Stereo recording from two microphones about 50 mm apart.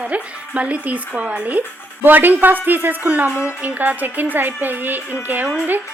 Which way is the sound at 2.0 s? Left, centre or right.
Right.